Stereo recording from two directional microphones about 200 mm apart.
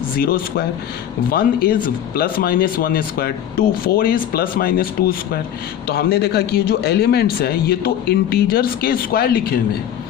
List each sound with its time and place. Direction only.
0.2 s speech: 50° left (ahead or behind)